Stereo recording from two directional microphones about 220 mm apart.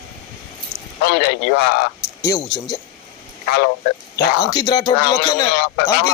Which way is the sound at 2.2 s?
20° left (ahead or behind).